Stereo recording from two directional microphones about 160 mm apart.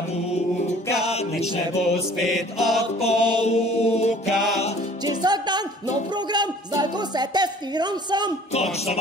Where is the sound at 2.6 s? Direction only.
Centre (ahead or behind).